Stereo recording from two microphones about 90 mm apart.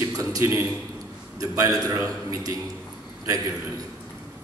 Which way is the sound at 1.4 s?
40° right (ahead or behind).